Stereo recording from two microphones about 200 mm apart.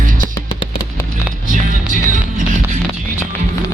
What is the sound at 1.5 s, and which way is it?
Music, 40° right (ahead or behind).